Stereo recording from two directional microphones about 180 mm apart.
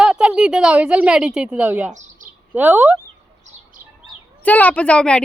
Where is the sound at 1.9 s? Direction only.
40° right (ahead or behind).